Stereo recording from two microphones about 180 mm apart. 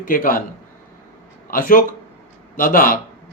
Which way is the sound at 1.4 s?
50° left (ahead or behind).